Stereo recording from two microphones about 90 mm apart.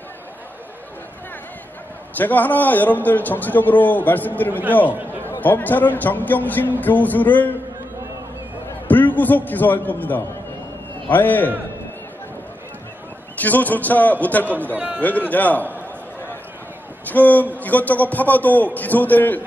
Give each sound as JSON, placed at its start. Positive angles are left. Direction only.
{"t": 2.1, "sound": "a man's voice", "side_deg": 20}
{"t": 8.8, "sound": "a man's voice", "side_deg": 20}
{"t": 13.4, "sound": "a man's voice", "side_deg": 20}
{"t": 17.1, "sound": "a man's voice", "side_deg": 20}